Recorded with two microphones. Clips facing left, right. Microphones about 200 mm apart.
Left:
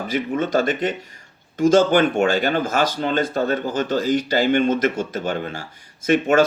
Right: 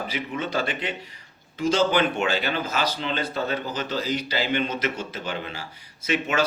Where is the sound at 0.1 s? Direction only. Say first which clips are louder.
Left 12 dB; 45° left (ahead or behind).